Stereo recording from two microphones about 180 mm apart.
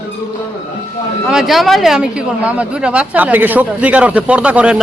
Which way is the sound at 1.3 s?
Centre (ahead or behind).